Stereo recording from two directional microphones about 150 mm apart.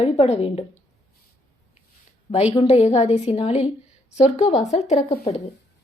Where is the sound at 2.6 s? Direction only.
45° left (ahead or behind).